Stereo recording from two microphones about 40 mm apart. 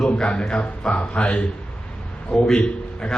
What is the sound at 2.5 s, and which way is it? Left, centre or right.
Speech, left.